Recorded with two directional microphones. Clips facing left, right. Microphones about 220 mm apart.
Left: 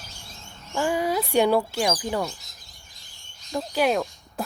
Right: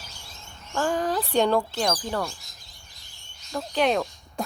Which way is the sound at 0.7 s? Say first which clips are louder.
Left 1 dB; 10° left (ahead or behind).